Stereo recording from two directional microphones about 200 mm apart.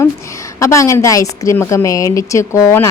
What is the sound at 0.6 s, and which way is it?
A woman's voice, 15° left (ahead or behind).